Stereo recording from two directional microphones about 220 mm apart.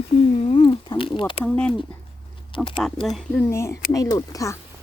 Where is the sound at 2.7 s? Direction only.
Centre (ahead or behind).